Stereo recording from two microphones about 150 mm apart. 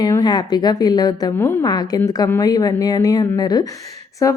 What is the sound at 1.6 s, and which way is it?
A woman's voice, 25° left (ahead or behind).